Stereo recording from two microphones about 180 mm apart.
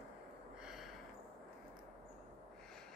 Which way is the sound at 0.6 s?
Centre (ahead or behind).